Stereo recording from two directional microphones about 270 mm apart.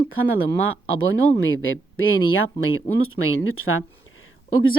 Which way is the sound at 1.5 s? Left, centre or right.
Left.